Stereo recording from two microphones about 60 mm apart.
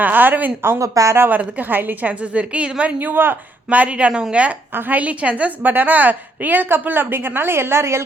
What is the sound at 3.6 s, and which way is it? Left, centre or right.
A woman's voice, right.